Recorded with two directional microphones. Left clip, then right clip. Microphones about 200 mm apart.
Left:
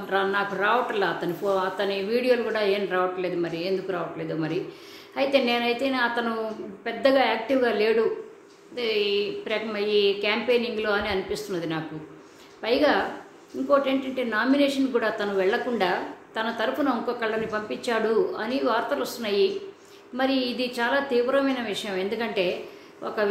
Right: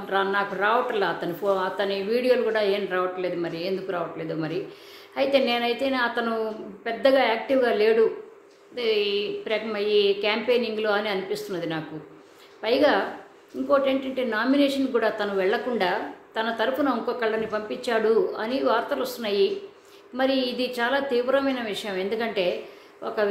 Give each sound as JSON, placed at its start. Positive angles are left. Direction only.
{"t": 0.1, "sound": "speech", "side_deg": -5}